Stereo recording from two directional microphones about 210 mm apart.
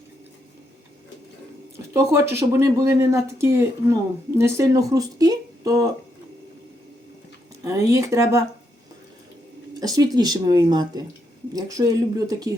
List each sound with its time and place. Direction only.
1.9 s speech: 15° right (ahead or behind)
7.6 s speech: 15° right (ahead or behind)
9.8 s speech: 15° right (ahead or behind)